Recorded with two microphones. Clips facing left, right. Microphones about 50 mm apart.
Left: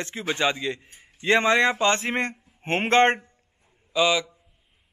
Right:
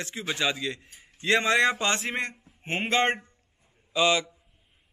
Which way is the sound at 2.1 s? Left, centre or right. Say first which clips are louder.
Left 4 dB; left.